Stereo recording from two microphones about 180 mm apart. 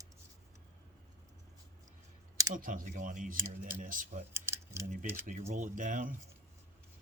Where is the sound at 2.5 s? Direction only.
50° right (ahead or behind).